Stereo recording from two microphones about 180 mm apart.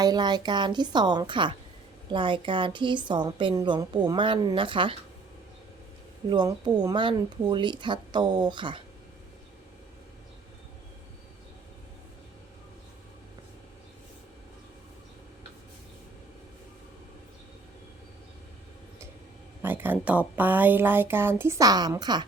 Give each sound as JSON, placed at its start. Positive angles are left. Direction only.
{"t": 0.0, "sound": "a woman's voice", "side_deg": -25}
{"t": 6.3, "sound": "a woman's voice", "side_deg": -25}
{"t": 19.6, "sound": "speech", "side_deg": -10}